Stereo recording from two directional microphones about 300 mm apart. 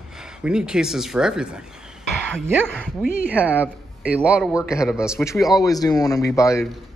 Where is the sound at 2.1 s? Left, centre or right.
Centre.